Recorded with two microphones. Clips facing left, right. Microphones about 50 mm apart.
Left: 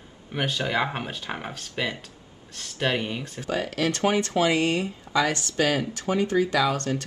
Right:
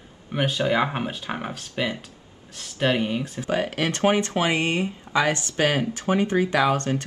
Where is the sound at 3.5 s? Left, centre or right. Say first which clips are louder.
Right 1 dB; right.